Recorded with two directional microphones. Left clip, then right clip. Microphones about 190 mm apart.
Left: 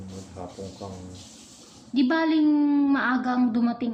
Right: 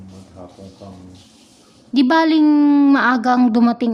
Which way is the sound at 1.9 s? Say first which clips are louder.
Right 9 dB; 70° right (ahead or behind).